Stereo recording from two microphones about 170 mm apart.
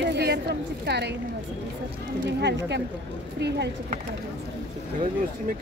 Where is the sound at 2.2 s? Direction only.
90° right.